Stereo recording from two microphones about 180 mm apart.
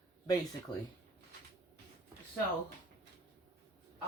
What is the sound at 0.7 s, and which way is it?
Speech, 25° left (ahead or behind).